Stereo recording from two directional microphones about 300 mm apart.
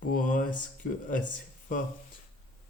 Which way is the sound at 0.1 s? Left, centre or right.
Left.